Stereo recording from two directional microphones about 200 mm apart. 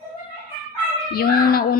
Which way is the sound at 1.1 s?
50° left (ahead or behind).